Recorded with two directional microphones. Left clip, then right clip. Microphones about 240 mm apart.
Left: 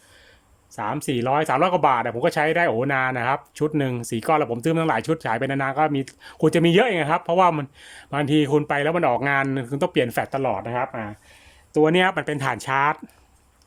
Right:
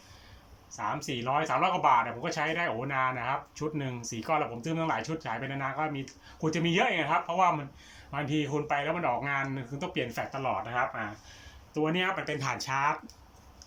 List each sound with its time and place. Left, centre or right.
0.8 s speech: left